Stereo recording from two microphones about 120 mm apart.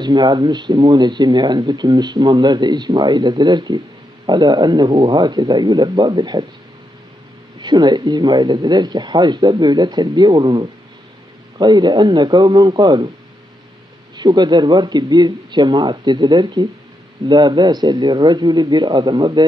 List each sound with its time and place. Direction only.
0.0 s speech: 40° right (ahead or behind)
7.6 s speech: 35° right (ahead or behind)
14.1 s speech: 35° right (ahead or behind)